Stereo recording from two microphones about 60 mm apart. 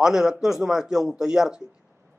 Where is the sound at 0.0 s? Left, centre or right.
Centre.